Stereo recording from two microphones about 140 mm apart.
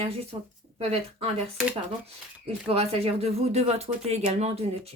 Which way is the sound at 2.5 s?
45° right (ahead or behind).